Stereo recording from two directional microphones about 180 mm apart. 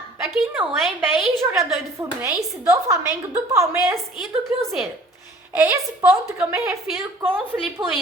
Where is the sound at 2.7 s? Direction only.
15° right (ahead or behind).